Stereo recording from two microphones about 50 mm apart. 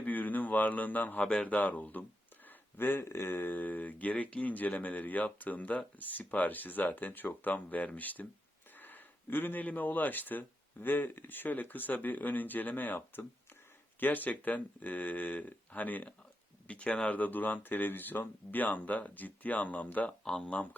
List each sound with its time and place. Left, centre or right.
0.0 s a sound: left
1.2 s speech: centre
1.5 s speech: left
2.5 s speech: left
17.2 s speech: left